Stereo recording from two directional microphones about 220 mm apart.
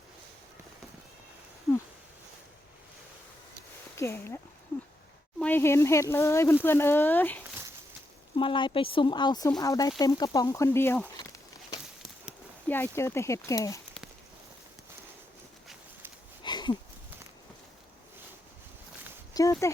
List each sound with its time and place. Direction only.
3.9 s speech: 10° left (ahead or behind)
5.4 s speech: 10° left (ahead or behind)
8.4 s speech: 20° left (ahead or behind)
12.6 s speech: 10° left (ahead or behind)
16.4 s a sound: 20° left (ahead or behind)
19.3 s a sound: 15° left (ahead or behind)